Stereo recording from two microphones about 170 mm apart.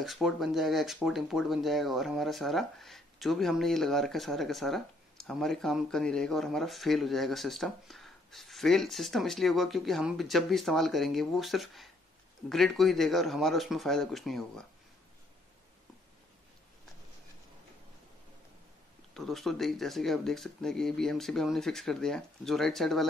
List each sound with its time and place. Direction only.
0.0 s speech: centre (ahead or behind)
19.1 s speech: centre (ahead or behind)